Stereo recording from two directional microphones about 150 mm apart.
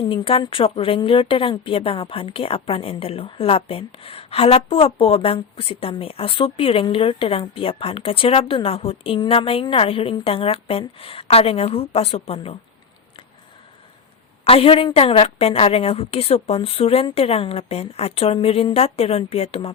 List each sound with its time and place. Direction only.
0.1 s a woman's voice: 35° left (ahead or behind)
14.4 s a woman's voice: 40° left (ahead or behind)